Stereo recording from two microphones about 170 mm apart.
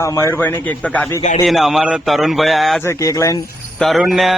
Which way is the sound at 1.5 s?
Centre (ahead or behind).